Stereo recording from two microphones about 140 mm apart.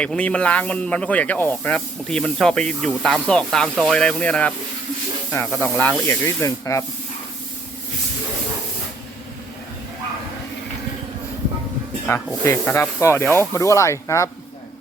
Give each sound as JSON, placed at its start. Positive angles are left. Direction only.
{"t": 0.0, "sound": "speech", "side_deg": 10}
{"t": 6.1, "sound": "speech", "side_deg": 20}
{"t": 12.0, "sound": "speech", "side_deg": 15}